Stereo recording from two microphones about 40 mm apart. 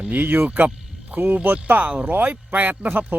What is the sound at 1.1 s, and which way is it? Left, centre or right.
Speech, right.